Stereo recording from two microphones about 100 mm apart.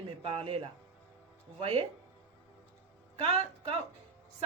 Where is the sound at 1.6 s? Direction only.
90° right.